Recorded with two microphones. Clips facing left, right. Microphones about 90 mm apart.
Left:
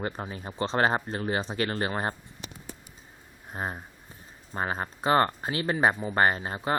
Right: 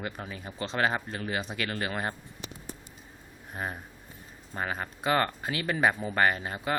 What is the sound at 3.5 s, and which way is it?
Speech, 25° left (ahead or behind).